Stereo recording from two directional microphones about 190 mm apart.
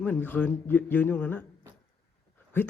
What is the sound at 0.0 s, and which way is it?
A man's voice, 10° left (ahead or behind).